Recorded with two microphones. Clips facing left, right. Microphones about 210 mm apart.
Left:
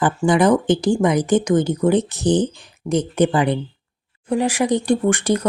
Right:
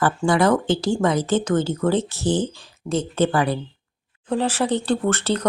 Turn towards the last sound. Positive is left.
turn(degrees=15)  # may be behind; listen again after turning